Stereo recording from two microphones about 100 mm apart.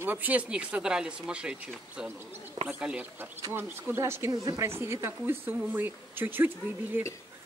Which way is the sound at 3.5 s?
25° right (ahead or behind).